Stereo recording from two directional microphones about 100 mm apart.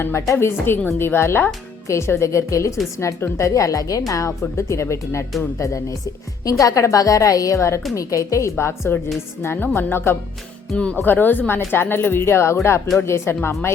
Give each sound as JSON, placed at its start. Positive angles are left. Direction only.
{"t": 0.0, "sound": "a woman's voice", "side_deg": 30}
{"t": 10.7, "sound": "speech", "side_deg": 10}